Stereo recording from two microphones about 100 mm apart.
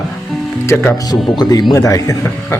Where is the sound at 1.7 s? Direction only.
35° left (ahead or behind).